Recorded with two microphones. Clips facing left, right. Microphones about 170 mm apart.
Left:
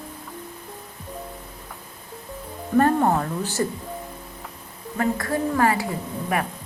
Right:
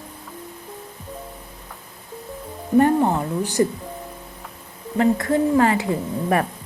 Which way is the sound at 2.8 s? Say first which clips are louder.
Right 1 dB; 15° right (ahead or behind).